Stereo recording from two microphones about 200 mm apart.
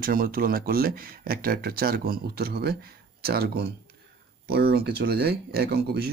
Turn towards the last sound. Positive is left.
turn(degrees=-50)  # may be behind; listen again after turning